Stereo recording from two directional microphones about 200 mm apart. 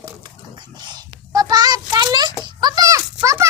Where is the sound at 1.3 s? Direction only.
20° right (ahead or behind).